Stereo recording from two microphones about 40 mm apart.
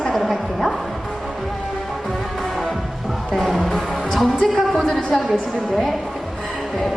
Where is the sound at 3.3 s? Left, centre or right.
Centre.